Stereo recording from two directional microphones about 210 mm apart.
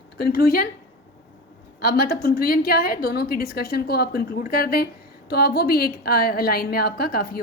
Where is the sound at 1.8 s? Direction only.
45° left (ahead or behind).